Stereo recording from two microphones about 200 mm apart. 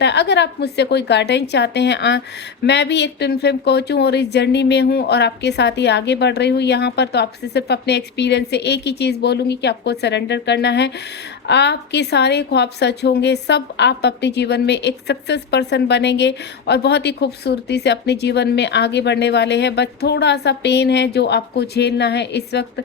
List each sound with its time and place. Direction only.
0.0 s a woman's voice: 60° left (ahead or behind)